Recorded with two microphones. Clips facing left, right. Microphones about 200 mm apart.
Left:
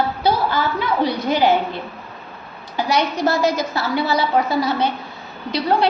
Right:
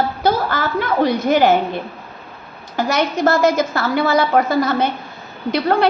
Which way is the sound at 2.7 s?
50° right (ahead or behind).